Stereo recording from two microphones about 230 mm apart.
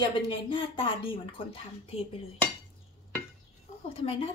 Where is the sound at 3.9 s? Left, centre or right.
Left.